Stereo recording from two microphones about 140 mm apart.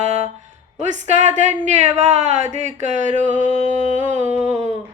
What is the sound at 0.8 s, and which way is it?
A woman's voice, 60° right (ahead or behind).